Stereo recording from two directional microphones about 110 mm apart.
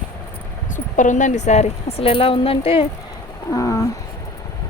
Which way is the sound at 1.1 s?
90° left.